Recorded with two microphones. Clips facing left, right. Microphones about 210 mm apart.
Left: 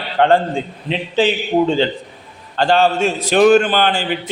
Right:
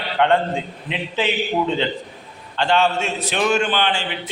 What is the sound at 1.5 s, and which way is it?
Mantra, 40° left (ahead or behind).